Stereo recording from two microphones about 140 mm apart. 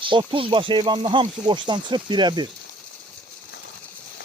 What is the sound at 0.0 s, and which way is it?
Speech, 35° right (ahead or behind).